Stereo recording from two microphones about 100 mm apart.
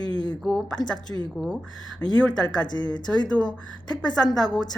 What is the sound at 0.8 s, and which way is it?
Speech, 40° left (ahead or behind).